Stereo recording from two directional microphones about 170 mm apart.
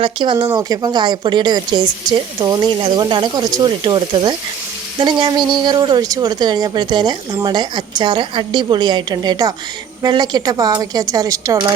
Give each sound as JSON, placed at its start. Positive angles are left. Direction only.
{"t": 0.0, "sound": "speech", "side_deg": -30}